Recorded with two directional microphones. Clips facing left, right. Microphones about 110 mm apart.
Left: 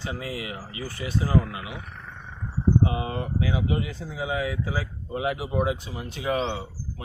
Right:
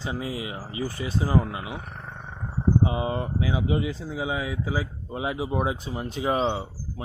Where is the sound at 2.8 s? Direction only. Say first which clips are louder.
Right 1 dB; 25° right (ahead or behind).